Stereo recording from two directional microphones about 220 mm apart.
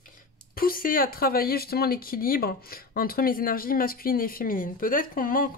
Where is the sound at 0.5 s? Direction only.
40° left (ahead or behind).